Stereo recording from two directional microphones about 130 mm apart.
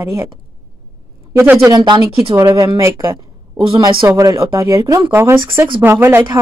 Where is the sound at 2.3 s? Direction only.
25° right (ahead or behind).